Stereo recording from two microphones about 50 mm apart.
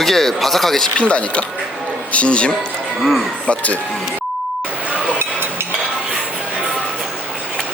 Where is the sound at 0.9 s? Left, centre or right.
Left.